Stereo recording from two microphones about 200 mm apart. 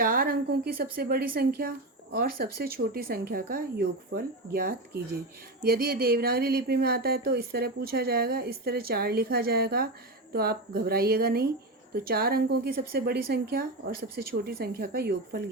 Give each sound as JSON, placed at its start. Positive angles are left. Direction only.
{"t": 0.0, "sound": "speech", "side_deg": -45}